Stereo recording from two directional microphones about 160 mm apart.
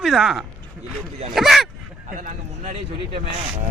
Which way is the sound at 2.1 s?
55° right (ahead or behind).